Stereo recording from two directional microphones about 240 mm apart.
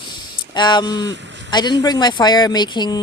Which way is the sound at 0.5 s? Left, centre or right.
Centre.